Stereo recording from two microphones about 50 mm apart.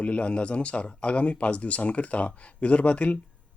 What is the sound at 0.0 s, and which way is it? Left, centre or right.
Speech, left.